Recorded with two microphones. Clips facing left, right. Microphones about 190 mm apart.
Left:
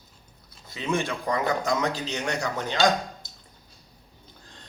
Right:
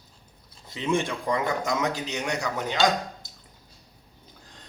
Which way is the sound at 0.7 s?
20° right (ahead or behind).